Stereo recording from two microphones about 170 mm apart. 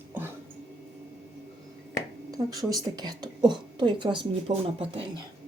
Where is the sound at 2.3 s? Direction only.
20° right (ahead or behind).